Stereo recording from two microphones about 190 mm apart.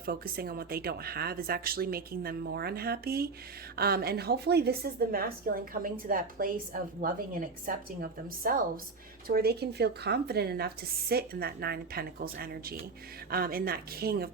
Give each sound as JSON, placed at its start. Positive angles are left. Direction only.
{"t": 0.0, "sound": "a woman's voice", "side_deg": -55}